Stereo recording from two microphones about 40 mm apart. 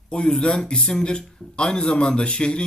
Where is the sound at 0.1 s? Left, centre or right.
Left.